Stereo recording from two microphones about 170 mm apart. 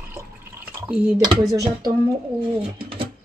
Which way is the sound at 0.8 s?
10° right (ahead or behind).